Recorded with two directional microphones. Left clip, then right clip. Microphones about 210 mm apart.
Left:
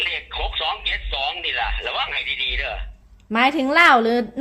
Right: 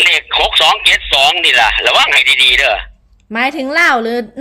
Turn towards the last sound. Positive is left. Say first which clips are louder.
# right 2 dB
turn(degrees=-20)  # may be behind; listen again after turning